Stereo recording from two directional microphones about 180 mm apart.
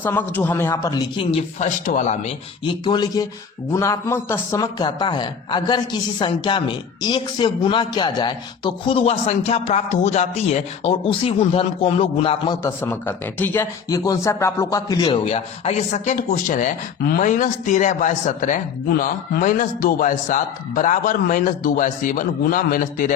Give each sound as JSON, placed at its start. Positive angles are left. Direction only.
{"t": 0.0, "sound": "a man's voice", "side_deg": 10}
{"t": 2.8, "sound": "a man's voice", "side_deg": 25}
{"t": 12.6, "sound": "a man's voice", "side_deg": 10}